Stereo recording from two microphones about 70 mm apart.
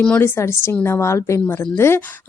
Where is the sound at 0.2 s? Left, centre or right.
Left.